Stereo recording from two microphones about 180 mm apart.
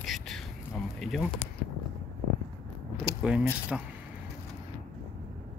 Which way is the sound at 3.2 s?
5° right (ahead or behind).